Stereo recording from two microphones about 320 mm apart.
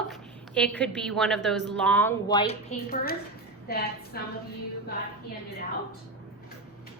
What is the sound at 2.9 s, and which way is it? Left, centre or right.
A woman's voice, left.